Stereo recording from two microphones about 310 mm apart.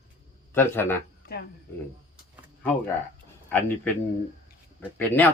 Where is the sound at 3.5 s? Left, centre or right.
Centre.